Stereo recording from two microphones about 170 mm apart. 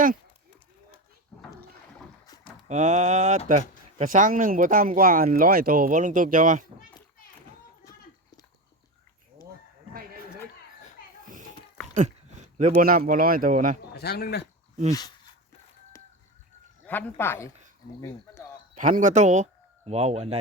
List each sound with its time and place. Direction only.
2.2 s a sound: 20° left (ahead or behind)
2.6 s speech: 45° right (ahead or behind)
11.9 s speech: 45° right (ahead or behind)
13.9 s speech: 70° left (ahead or behind)
15.9 s chicken: 15° left (ahead or behind)
16.8 s a man's voice: 10° left (ahead or behind)
18.7 s speech: 50° right (ahead or behind)